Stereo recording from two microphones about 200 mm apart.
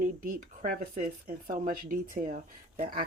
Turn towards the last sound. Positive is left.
turn(degrees=-45)  # may be behind; listen again after turning